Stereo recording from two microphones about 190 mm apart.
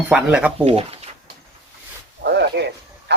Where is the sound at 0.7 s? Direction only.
30° right (ahead or behind).